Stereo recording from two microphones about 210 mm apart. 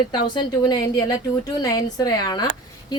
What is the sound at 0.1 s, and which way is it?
A woman's voice, 20° left (ahead or behind).